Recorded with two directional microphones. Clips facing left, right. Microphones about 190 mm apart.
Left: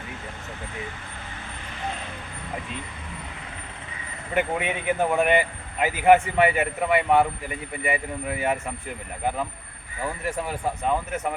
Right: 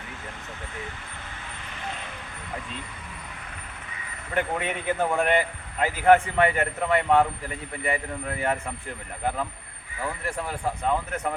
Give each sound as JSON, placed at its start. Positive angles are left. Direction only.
{"t": 4.4, "sound": "a man's voice", "side_deg": 15}
{"t": 10.0, "sound": "a man's voice", "side_deg": 15}